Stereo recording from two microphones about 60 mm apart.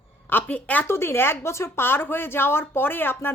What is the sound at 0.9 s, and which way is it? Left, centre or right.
A woman's voice, left.